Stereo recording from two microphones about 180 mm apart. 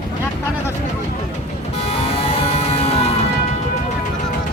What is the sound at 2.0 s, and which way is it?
Music, 35° left (ahead or behind).